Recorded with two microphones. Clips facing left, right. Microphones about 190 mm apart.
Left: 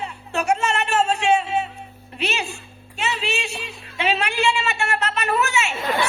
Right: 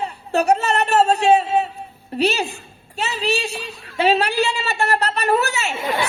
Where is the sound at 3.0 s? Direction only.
35° right (ahead or behind).